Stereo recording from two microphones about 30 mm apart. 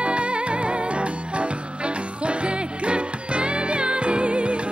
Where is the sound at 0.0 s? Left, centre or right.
Right.